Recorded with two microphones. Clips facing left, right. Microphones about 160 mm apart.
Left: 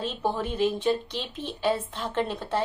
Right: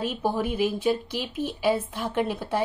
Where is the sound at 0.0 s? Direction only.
10° right (ahead or behind).